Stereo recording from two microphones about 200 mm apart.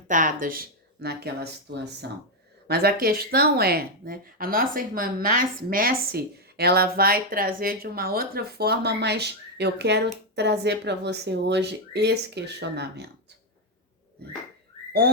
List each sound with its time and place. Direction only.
0.1 s speech: 40° right (ahead or behind); by 13.1 s 55° right (ahead or behind)